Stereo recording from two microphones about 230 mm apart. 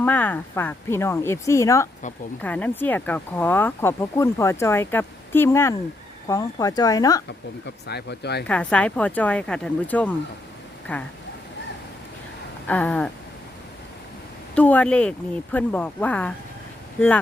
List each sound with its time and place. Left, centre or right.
0.0 s speech: centre
7.9 s speech: left
8.4 s speech: centre
12.6 s speech: centre
14.5 s speech: centre